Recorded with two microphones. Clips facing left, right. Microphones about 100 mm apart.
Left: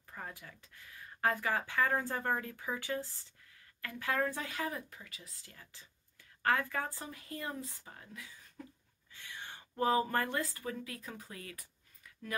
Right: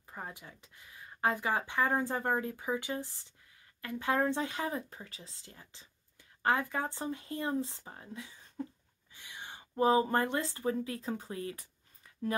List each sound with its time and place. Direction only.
0.1 s speech: 20° right (ahead or behind)
9.1 s speech: 15° right (ahead or behind)